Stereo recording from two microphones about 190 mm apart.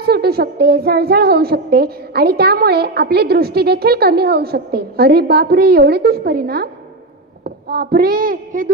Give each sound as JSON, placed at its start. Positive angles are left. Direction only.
{"t": 0.0, "sound": "a woman's voice", "side_deg": -55}
{"t": 7.4, "sound": "child singing", "side_deg": -55}